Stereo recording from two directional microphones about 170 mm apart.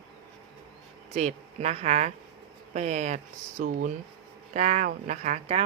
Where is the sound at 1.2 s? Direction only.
40° right (ahead or behind).